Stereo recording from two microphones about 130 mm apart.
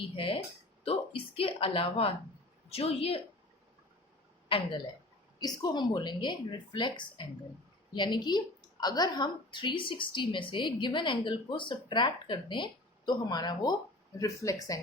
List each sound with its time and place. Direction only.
0.0 s speech: 45° left (ahead or behind)
4.4 s a woman's voice: 40° left (ahead or behind)
5.4 s a woman's voice: 30° left (ahead or behind)